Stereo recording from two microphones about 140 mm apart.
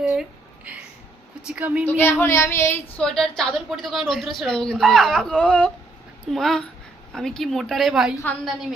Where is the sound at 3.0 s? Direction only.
5° left (ahead or behind).